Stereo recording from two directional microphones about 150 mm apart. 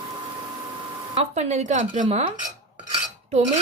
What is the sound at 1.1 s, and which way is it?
Dishes, 45° right (ahead or behind).